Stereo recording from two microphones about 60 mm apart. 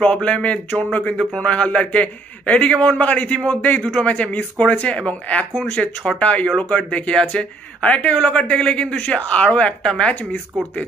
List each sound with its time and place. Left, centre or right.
0.0 s speech: centre